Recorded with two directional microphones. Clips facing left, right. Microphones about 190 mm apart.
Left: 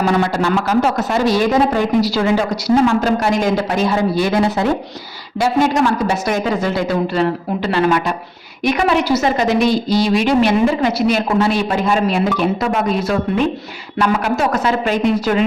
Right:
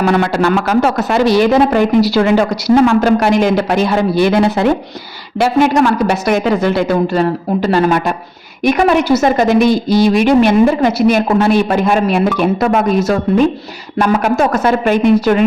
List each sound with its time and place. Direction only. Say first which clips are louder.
0.0 s a woman's voice: right 3 dB; 65° right (ahead or behind)
7.1 s a woman's voice: right 3 dB; 45° right (ahead or behind)